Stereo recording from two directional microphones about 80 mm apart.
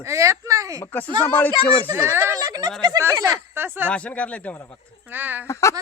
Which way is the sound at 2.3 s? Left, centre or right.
Right.